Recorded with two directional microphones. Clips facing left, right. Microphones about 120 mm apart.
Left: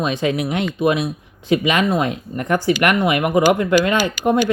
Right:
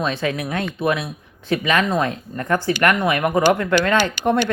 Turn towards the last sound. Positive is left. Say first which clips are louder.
# left 2 dB
turn(degrees=10)  # may be behind; listen again after turning